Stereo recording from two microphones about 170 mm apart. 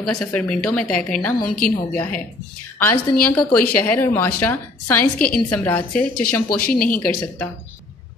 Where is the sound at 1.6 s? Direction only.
55° left (ahead or behind).